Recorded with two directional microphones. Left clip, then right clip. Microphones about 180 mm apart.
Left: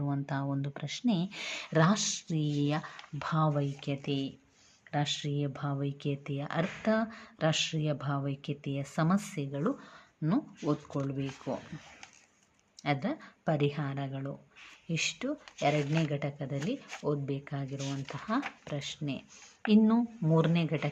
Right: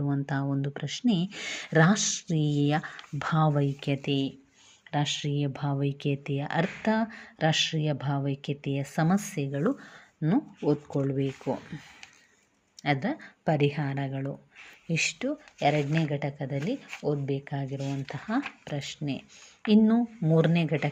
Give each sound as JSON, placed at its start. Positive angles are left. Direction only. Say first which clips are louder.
{"t": 0.0, "sound": "a woman's voice", "louder": "right 4 dB", "side_deg": -15}
{"t": 12.8, "sound": "a woman's voice", "louder": "right 4 dB", "side_deg": -15}